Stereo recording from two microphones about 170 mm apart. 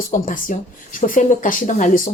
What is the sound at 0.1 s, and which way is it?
Speech, 50° left (ahead or behind).